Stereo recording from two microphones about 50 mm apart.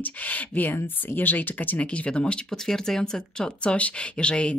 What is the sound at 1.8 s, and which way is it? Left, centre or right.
Speech, left.